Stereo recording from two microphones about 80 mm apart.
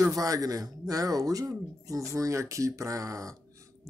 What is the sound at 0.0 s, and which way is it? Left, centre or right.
Speech, right.